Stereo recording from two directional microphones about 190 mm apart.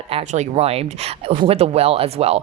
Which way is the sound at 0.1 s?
35° right (ahead or behind).